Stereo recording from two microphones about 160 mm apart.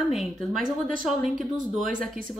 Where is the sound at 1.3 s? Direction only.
55° right (ahead or behind).